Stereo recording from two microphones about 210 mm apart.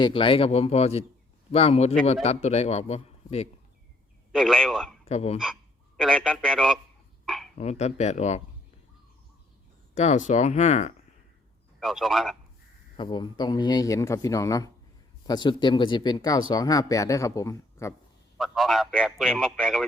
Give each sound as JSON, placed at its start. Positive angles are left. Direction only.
{"t": 0.0, "sound": "a man's voice", "side_deg": 25}
{"t": 4.3, "sound": "a man's voice", "side_deg": 0}
{"t": 5.0, "sound": "a man's voice", "side_deg": 30}
{"t": 6.0, "sound": "a man's voice", "side_deg": 5}
{"t": 7.6, "sound": "a man's voice", "side_deg": 30}
{"t": 9.9, "sound": "a man's voice", "side_deg": 35}
{"t": 11.8, "sound": "a man's voice", "side_deg": 0}
{"t": 13.0, "sound": "speech", "side_deg": 20}
{"t": 18.3, "sound": "a man's voice", "side_deg": 0}